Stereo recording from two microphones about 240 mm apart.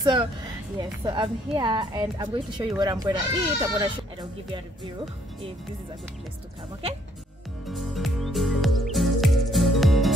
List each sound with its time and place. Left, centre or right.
0.0 s speech: centre
7.6 s music: centre